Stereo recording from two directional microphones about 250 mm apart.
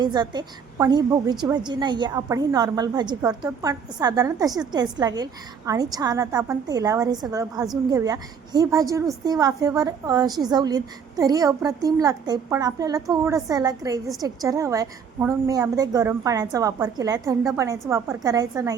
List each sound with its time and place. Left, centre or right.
0.0 s a woman's voice: centre